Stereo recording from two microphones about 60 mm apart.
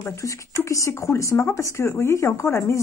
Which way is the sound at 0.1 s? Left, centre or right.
Left.